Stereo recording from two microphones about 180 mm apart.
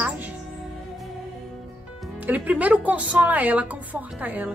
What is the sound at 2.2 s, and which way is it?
Speech, 10° right (ahead or behind).